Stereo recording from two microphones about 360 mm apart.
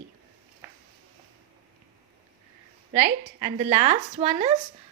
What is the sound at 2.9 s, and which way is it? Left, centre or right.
Speech, centre.